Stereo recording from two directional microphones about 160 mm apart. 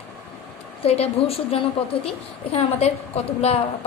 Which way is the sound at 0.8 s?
40° left (ahead or behind).